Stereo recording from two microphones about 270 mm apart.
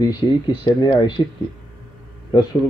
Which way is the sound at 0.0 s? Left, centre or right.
Centre.